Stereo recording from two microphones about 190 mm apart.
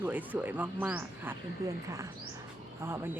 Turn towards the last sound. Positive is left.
turn(degrees=-10)  # may be behind; listen again after turning